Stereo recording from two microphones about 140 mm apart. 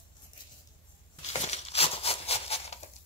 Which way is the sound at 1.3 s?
50° left (ahead or behind).